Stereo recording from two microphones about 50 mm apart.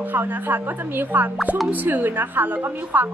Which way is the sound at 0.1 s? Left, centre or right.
Right.